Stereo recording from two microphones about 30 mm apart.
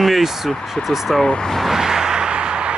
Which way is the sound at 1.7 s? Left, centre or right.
Centre.